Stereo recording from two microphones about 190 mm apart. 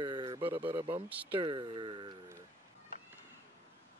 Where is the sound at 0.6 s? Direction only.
10° right (ahead or behind).